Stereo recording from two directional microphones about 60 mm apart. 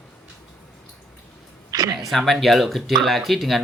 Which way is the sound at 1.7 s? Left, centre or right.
Right.